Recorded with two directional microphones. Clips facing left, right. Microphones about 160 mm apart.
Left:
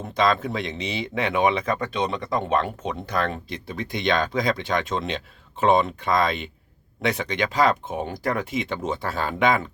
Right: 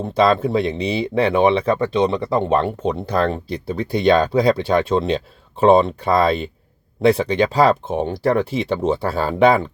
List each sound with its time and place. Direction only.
0.0 s speech: 35° right (ahead or behind)